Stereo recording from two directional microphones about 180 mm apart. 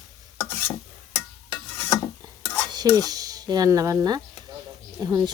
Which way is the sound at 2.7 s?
20° right (ahead or behind).